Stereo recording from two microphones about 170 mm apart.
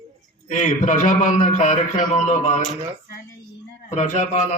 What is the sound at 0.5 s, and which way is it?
A man's voice, 45° left (ahead or behind).